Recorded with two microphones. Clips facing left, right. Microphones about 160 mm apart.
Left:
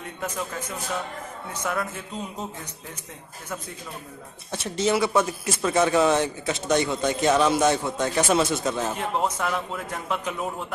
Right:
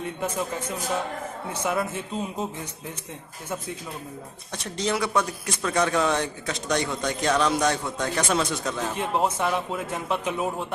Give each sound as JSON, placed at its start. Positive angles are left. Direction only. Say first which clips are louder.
{"t": 0.2, "sound": "a man's voice", "louder": "right 1 dB", "side_deg": -30}
{"t": 1.6, "sound": "speech", "louder": "right 2 dB", "side_deg": -15}
{"t": 4.5, "sound": "a man's voice", "louder": "left 4 dB", "side_deg": 5}
{"t": 9.2, "sound": "a man's voice", "louder": "right 2 dB", "side_deg": -20}